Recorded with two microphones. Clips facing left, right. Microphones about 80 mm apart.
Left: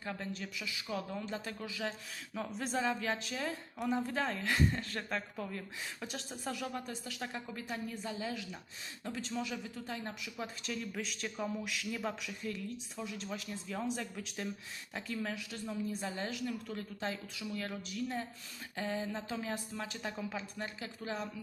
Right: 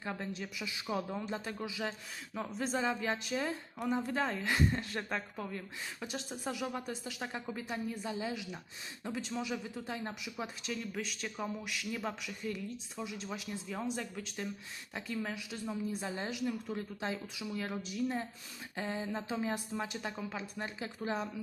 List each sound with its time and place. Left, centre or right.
0.0 s speech: centre
0.6 s speech: right
1.2 s speech: centre
10.4 s speech: centre
20.0 s speech: centre
20.7 s speech: right